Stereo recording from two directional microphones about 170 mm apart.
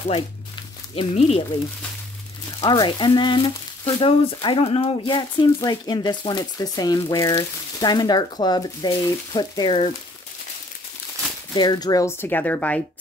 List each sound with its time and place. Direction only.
0.9 s speech: 40° left (ahead or behind)
2.6 s speech: 25° left (ahead or behind)
11.5 s speech: 25° left (ahead or behind); by 12.8 s 10° left (ahead or behind)